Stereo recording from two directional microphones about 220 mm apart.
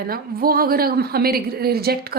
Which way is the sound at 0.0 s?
40° right (ahead or behind).